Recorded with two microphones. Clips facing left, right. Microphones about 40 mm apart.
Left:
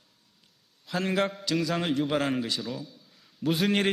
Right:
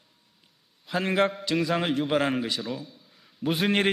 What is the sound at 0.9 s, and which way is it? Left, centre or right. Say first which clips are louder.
A man's voice: right 3 dB; centre.